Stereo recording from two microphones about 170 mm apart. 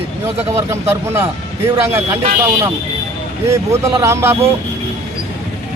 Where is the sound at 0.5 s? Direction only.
15° right (ahead or behind).